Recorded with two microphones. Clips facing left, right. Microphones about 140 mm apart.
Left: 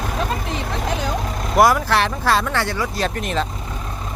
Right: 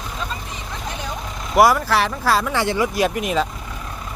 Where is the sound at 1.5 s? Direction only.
5° right (ahead or behind).